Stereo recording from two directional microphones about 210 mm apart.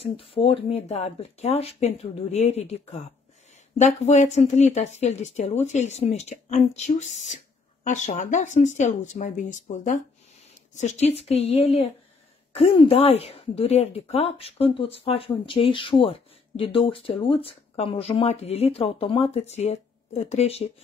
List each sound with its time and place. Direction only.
0.0 s a woman's voice: 25° left (ahead or behind)